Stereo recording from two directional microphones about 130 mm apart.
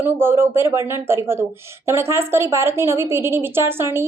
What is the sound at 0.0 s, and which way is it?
A woman's voice, 15° right (ahead or behind).